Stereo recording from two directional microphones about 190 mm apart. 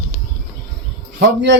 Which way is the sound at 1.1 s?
70° right (ahead or behind).